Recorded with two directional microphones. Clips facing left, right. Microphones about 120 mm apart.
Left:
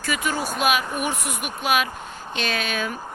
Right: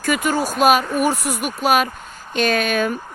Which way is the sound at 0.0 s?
50° right (ahead or behind).